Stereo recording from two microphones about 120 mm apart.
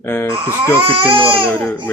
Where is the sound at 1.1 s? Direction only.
15° right (ahead or behind).